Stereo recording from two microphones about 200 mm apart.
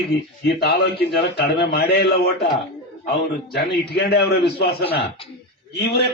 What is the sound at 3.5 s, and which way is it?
A man's voice, 55° left (ahead or behind).